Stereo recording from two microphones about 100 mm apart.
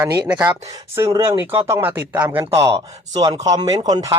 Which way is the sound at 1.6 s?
30° right (ahead or behind).